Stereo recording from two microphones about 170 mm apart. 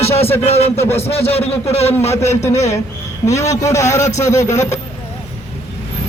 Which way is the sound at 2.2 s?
15° left (ahead or behind).